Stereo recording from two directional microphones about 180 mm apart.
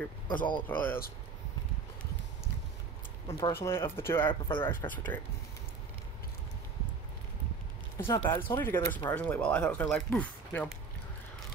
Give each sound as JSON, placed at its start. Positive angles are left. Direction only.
{"t": 0.7, "sound": "speech", "side_deg": 10}
{"t": 3.3, "sound": "speech", "side_deg": 25}
{"t": 3.5, "sound": "speech", "side_deg": 15}
{"t": 4.3, "sound": "speech", "side_deg": 30}
{"t": 4.6, "sound": "speech", "side_deg": 10}
{"t": 8.0, "sound": "speech", "side_deg": 10}